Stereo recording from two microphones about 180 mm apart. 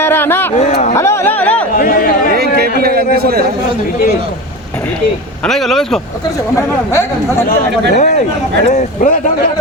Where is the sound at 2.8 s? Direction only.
60° right (ahead or behind).